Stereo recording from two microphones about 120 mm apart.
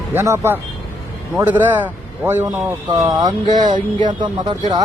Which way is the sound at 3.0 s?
30° right (ahead or behind).